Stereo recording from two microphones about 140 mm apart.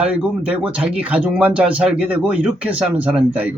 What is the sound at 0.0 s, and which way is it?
A man's voice, 10° right (ahead or behind).